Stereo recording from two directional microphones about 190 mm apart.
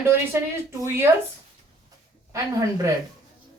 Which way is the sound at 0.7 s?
15° right (ahead or behind).